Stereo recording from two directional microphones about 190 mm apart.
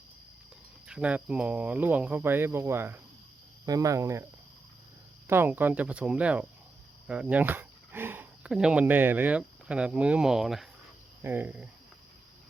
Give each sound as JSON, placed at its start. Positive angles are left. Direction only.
{"t": 0.9, "sound": "speech", "side_deg": -5}
{"t": 5.3, "sound": "speech", "side_deg": -10}